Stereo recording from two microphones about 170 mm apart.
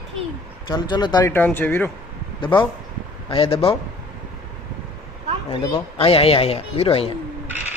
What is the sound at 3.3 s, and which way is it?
Speech, 35° left (ahead or behind).